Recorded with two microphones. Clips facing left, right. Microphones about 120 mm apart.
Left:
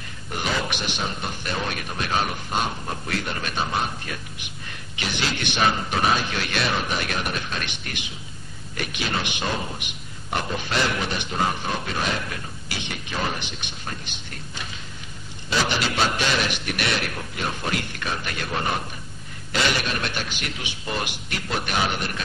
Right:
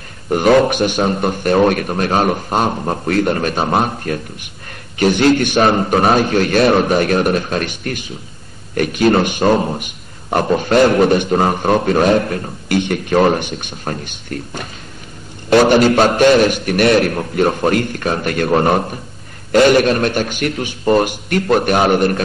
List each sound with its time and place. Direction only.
0.3 s speech: 55° right (ahead or behind)